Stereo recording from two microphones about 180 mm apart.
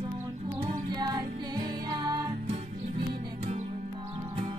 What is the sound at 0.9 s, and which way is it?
Music, 25° right (ahead or behind).